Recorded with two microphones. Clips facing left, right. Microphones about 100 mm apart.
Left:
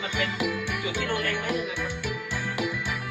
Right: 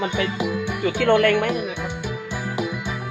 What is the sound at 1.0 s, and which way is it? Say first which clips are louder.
Speech: right 14 dB; 80° right.